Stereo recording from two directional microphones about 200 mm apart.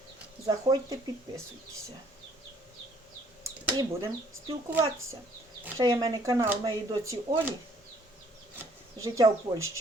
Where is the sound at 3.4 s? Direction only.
15° right (ahead or behind).